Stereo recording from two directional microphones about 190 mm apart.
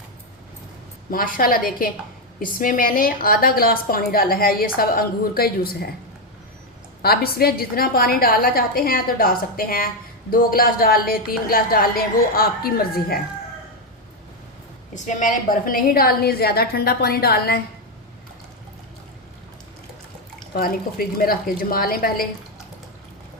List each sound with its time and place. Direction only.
1.1 s a woman's voice: 50° left (ahead or behind)
7.0 s a woman's voice: 55° left (ahead or behind)
14.9 s a woman's voice: 40° left (ahead or behind)
20.5 s a woman's voice: 50° left (ahead or behind)